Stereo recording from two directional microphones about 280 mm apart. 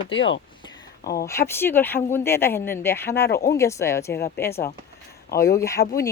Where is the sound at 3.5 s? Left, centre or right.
Centre.